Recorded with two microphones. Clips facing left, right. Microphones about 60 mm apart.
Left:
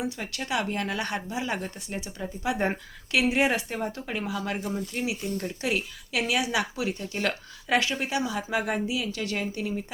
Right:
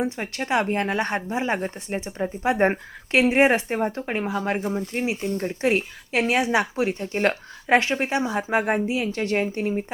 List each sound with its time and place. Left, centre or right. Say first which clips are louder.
0.0 s speech: right 5 dB; right